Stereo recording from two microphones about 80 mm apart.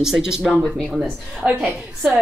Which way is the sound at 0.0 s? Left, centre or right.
Centre.